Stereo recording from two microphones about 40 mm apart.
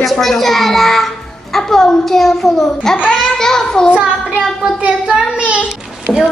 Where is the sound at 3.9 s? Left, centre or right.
Right.